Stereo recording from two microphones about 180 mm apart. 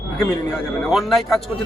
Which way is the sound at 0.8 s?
Centre (ahead or behind).